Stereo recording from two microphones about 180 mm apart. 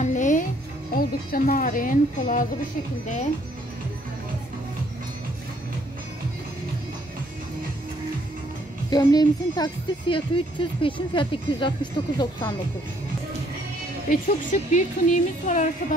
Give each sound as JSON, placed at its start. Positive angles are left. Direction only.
{"t": 0.0, "sound": "music", "side_deg": 45}
{"t": 0.9, "sound": "speech", "side_deg": 50}
{"t": 8.9, "sound": "speech", "side_deg": 20}
{"t": 14.0, "sound": "a woman's voice", "side_deg": 45}